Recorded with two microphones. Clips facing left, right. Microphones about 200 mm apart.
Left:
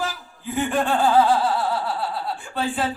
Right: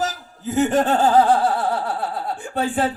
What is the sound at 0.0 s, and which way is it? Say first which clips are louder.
Snicker: right 4 dB; 40° right (ahead or behind).